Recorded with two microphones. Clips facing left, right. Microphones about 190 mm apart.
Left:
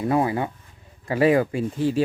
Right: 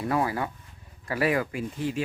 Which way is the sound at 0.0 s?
20° left (ahead or behind).